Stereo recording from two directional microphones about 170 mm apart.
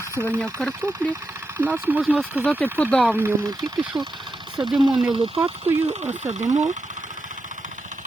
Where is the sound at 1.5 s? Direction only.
10° right (ahead or behind).